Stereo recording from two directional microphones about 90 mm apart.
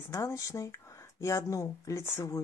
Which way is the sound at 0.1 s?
35° left (ahead or behind).